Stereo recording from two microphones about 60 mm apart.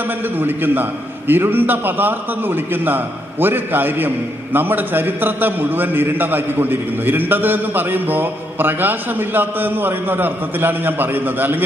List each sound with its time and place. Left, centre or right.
0.4 s a man's voice: right